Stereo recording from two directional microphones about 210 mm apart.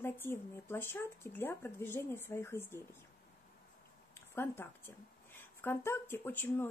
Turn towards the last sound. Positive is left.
turn(degrees=10)  # may be behind; listen again after turning